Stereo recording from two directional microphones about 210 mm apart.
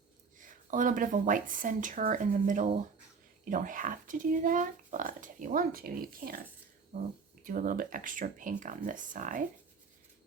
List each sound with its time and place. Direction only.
0.3 s speech: 40° right (ahead or behind)